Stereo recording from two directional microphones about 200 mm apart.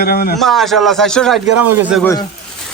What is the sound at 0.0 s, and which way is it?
Speech, 50° left (ahead or behind).